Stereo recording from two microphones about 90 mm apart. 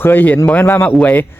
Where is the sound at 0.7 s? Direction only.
25° left (ahead or behind).